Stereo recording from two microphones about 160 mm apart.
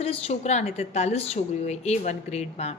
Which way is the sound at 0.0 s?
40° left (ahead or behind).